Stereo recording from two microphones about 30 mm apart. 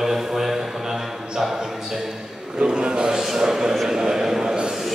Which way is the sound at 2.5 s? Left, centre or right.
Right.